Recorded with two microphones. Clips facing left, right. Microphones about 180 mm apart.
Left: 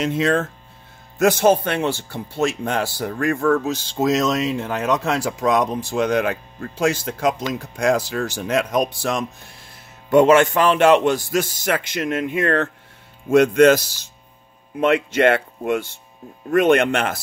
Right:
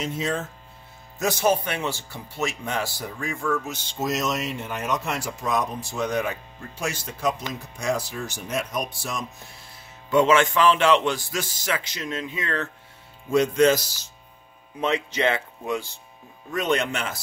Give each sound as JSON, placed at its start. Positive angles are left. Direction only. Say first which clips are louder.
{"t": 0.0, "sound": "speech", "louder": "left 8 dB", "side_deg": 90}
{"t": 1.1, "sound": "speech", "louder": "left 7 dB", "side_deg": 70}
{"t": 4.0, "sound": "speech", "louder": "left 7 dB", "side_deg": 90}
{"t": 10.3, "sound": "speech", "louder": "left 4 dB", "side_deg": 50}
{"t": 14.8, "sound": "speech", "louder": "left 7 dB", "side_deg": 60}